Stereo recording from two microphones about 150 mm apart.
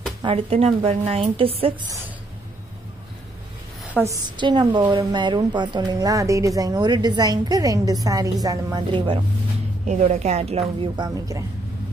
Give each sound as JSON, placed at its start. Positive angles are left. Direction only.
{"t": 0.2, "sound": "a woman's voice", "side_deg": -40}
{"t": 4.0, "sound": "a woman's voice", "side_deg": 5}
{"t": 4.4, "sound": "speech", "side_deg": -30}
{"t": 9.8, "sound": "speech", "side_deg": -50}
{"t": 11.0, "sound": "speech", "side_deg": -20}